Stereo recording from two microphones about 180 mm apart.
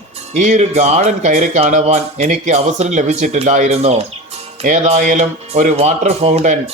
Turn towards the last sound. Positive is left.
turn(degrees=-40)  # may be behind; listen again after turning